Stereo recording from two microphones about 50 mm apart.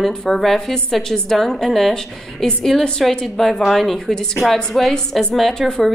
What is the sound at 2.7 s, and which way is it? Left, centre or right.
A woman's voice, centre.